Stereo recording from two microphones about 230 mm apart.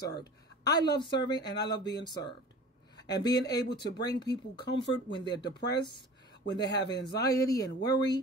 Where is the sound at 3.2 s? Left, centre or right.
Centre.